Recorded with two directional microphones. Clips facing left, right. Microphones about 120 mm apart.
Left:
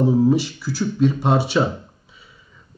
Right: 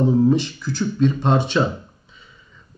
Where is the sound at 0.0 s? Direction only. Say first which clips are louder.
Even; 10° left (ahead or behind).